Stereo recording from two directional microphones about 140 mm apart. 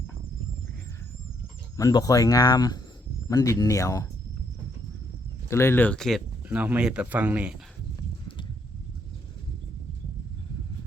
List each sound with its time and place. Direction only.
1.7 s speech: 25° left (ahead or behind)
5.5 s speech: 20° left (ahead or behind)
6.5 s speech: 10° right (ahead or behind)